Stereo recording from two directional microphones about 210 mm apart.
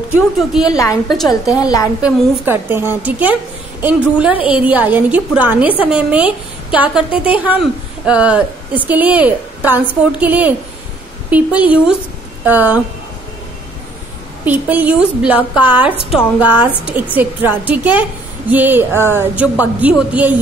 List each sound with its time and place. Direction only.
0.1 s a woman's voice: centre (ahead or behind)
0.7 s a woman's voice: 15° left (ahead or behind)
2.0 s a woman's voice: 5° right (ahead or behind)
14.4 s speech: 10° right (ahead or behind)